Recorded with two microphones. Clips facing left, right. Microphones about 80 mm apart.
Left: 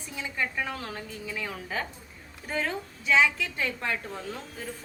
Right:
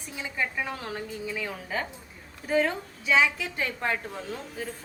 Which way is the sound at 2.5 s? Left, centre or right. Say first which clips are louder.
Right 6 dB; centre.